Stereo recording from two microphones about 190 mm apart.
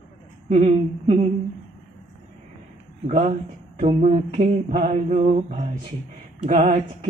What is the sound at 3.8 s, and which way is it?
Mantra, 40° right (ahead or behind).